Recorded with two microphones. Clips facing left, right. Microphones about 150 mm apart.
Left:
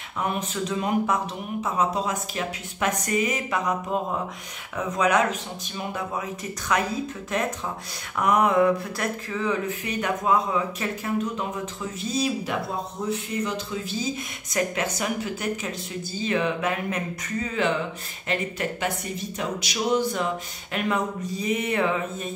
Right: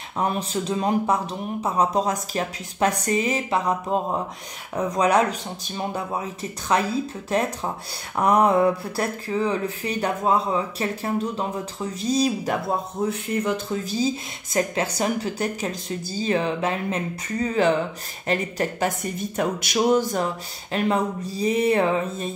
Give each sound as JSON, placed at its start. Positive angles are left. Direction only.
{"t": 0.2, "sound": "speech", "side_deg": -35}
{"t": 13.0, "sound": "speech", "side_deg": -60}
{"t": 20.7, "sound": "speech", "side_deg": -35}